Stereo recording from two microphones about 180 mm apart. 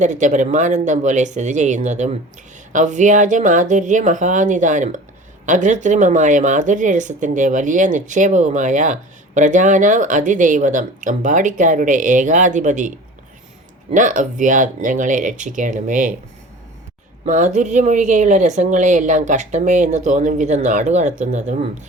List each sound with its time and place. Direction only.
0.0 s speech: 45° right (ahead or behind)
13.9 s speech: 45° right (ahead or behind)
17.2 s speech: 45° right (ahead or behind)